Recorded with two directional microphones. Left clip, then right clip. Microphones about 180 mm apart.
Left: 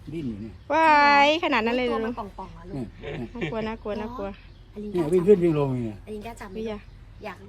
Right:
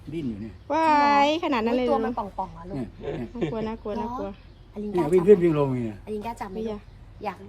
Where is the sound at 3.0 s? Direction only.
25° right (ahead or behind).